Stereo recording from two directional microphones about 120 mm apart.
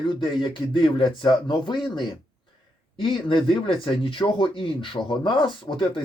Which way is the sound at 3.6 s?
45° left (ahead or behind).